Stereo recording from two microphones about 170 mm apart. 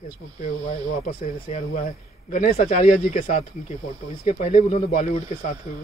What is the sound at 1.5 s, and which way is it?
Speech, 40° left (ahead or behind).